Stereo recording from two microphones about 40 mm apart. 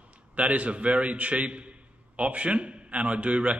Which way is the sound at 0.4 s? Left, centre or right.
Right.